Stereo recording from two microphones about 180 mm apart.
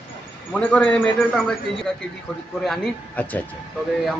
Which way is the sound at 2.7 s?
5° left (ahead or behind).